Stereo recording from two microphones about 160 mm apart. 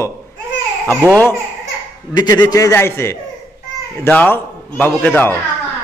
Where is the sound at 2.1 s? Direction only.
25° left (ahead or behind).